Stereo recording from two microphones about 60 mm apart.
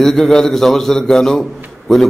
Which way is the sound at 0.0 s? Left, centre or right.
Centre.